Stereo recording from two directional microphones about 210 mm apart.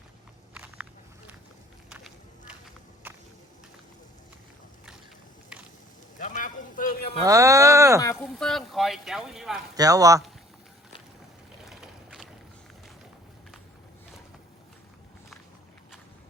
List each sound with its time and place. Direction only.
0.5 s walk: 5° right (ahead or behind)
1.9 s walk: 5° right (ahead or behind)
5.5 s a sound: 5° right (ahead or behind)
6.1 s a sound: 40° left (ahead or behind)
7.3 s speech: 15° right (ahead or behind)
8.1 s speech: centre (ahead or behind)
9.7 s speech: 15° right (ahead or behind)
11.7 s vehicle: centre (ahead or behind)